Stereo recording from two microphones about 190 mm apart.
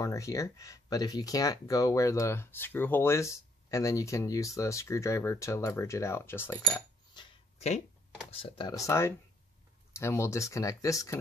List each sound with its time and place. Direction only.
0.0 s speech: 15° left (ahead or behind)
7.5 s speech: 35° left (ahead or behind); by 11.1 s 15° left (ahead or behind)